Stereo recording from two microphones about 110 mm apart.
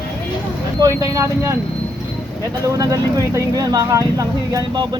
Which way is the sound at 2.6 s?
30° right (ahead or behind).